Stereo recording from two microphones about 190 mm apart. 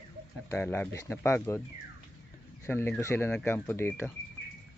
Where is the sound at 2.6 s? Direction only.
10° left (ahead or behind).